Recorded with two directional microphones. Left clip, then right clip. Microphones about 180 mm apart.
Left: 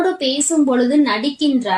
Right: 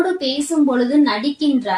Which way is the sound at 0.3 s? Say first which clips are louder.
Left 1 dB; 45° left (ahead or behind).